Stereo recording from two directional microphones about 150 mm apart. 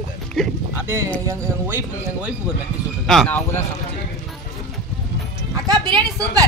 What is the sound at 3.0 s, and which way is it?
Speech, centre (ahead or behind).